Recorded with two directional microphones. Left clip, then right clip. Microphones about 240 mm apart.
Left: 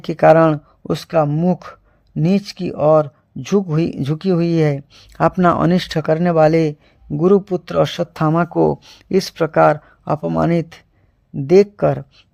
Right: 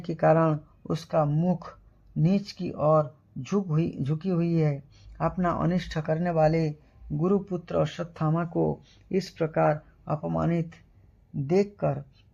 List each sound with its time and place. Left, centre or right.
0.0 s speech: left